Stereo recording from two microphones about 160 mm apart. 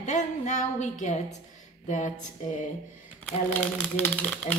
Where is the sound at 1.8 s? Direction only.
50° left (ahead or behind).